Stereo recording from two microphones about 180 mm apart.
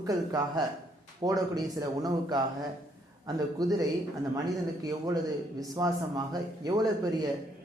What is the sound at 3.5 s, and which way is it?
Speech, 20° right (ahead or behind).